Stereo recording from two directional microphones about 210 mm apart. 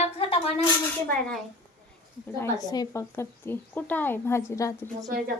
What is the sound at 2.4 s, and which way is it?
Speech, 15° left (ahead or behind).